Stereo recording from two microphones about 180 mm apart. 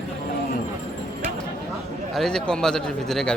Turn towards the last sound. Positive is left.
turn(degrees=5)  # may be behind; listen again after turning